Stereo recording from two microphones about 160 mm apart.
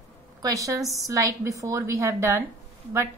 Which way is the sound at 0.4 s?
20° right (ahead or behind).